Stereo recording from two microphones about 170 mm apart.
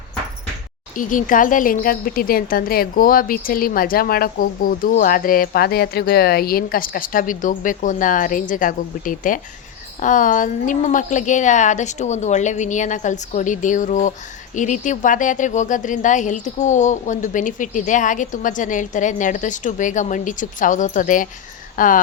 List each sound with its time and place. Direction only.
0.9 s a woman's voice: 50° left (ahead or behind)